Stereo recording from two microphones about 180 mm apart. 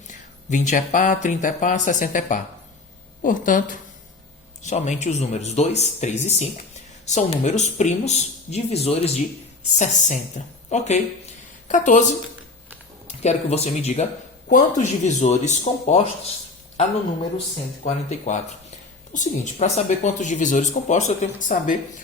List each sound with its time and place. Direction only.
0.1 s speech: 45° left (ahead or behind)
13.1 s speech: 35° left (ahead or behind)
17.8 s speech: 40° left (ahead or behind)